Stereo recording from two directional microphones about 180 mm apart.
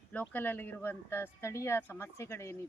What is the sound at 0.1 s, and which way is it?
Speech, 10° left (ahead or behind).